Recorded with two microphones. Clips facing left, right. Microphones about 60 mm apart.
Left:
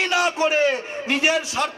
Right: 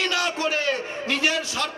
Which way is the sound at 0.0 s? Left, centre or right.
Centre.